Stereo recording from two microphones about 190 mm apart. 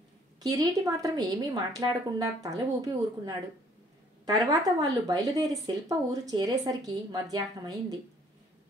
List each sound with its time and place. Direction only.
0.4 s speech: 20° right (ahead or behind)